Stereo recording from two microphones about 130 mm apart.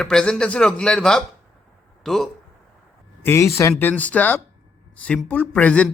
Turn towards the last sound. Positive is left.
turn(degrees=10)  # may be behind; listen again after turning